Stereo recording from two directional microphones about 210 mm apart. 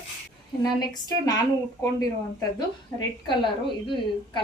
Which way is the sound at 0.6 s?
20° left (ahead or behind).